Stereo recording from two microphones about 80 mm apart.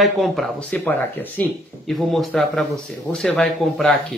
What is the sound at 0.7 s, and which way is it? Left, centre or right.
Speech, left.